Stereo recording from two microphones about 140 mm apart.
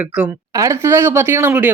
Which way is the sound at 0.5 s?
20° right (ahead or behind).